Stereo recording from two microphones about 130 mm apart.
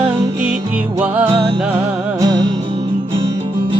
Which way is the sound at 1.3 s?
40° right (ahead or behind).